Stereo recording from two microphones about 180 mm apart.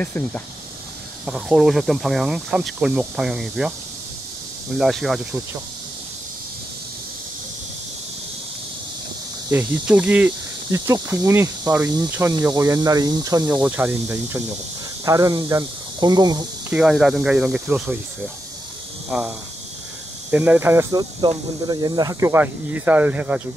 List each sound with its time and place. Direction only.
0.0 s speech: 10° left (ahead or behind)
1.2 s speech: centre (ahead or behind)
4.7 s speech: centre (ahead or behind)
9.5 s speech: 10° right (ahead or behind)
13.5 s speech: 10° right (ahead or behind)
16.7 s speech: 5° right (ahead or behind)
19.0 s speech: 5° right (ahead or behind)
21.2 s speech: 25° right (ahead or behind); by 23.4 s 10° right (ahead or behind)